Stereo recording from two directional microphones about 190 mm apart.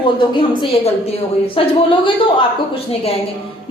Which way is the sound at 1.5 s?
25° left (ahead or behind).